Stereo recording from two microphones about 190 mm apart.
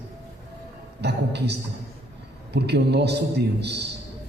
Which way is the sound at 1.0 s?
60° right (ahead or behind).